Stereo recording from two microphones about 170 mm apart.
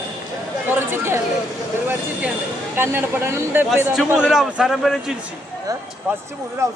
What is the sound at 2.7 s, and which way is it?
A man's voice, 15° right (ahead or behind).